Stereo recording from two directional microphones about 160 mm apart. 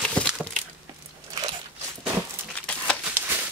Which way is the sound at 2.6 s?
10° left (ahead or behind).